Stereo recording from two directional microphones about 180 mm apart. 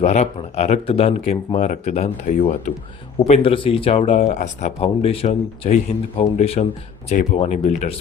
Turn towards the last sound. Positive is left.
turn(degrees=40)  # may be behind; listen again after turning